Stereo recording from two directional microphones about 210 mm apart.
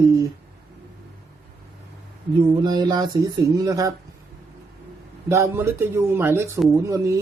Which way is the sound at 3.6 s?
15° right (ahead or behind).